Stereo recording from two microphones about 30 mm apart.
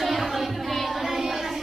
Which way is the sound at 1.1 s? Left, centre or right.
Centre.